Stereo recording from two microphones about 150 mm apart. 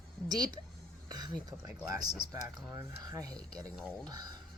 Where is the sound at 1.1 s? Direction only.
25° right (ahead or behind).